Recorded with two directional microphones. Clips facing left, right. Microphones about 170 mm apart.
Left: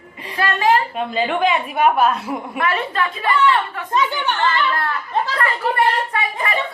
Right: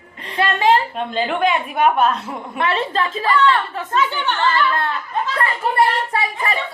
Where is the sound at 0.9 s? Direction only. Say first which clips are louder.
Left 1 dB; 5° left (ahead or behind).